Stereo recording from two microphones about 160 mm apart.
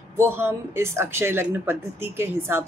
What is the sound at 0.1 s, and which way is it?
A woman's voice, 15° right (ahead or behind).